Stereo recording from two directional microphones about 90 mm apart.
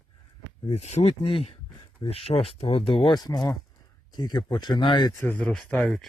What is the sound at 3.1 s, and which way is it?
Speech, 50° left (ahead or behind).